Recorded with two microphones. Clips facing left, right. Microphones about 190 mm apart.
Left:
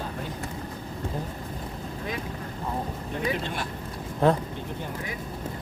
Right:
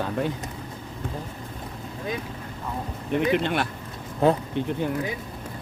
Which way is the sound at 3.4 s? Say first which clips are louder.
Right 7 dB; 70° right (ahead or behind).